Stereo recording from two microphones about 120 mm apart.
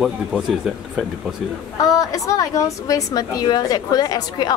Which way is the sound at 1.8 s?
30° left (ahead or behind).